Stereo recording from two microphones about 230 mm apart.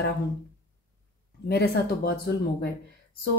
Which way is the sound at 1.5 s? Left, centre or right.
Left.